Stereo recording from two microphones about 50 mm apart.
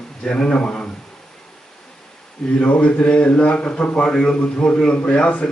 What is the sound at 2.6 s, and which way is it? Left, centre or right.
Speech, left.